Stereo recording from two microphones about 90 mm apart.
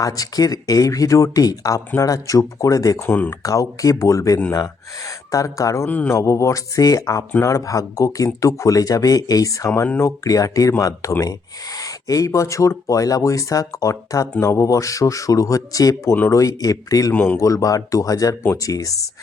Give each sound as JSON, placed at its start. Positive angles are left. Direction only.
{"t": 0.0, "sound": "speech", "side_deg": 40}
{"t": 3.0, "sound": "speech", "side_deg": 25}
{"t": 3.4, "sound": "speech", "side_deg": 40}
{"t": 5.9, "sound": "speech", "side_deg": 20}
{"t": 6.1, "sound": "speech", "side_deg": 35}
{"t": 17.1, "sound": "speech", "side_deg": 20}
{"t": 17.4, "sound": "speech", "side_deg": 40}